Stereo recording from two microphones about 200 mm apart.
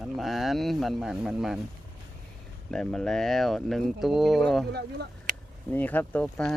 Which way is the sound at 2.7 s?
5° left (ahead or behind).